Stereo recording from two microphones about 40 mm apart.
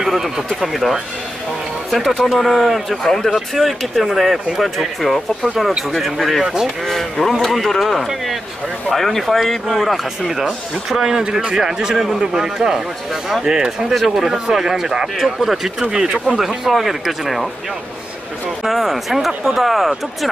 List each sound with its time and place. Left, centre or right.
0.0 s a sound: centre
0.6 s speech: centre
3.0 s speech: centre
3.3 s speech: centre
6.4 s speech: centre
6.9 s speech: centre
10.3 s speech: centre
13.9 s speech: centre
16.3 s speech: centre
18.6 s speech: centre